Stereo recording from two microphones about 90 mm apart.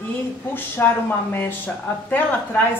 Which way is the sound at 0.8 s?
25° left (ahead or behind).